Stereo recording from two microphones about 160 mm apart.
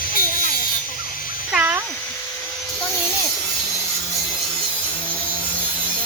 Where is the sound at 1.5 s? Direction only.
10° right (ahead or behind).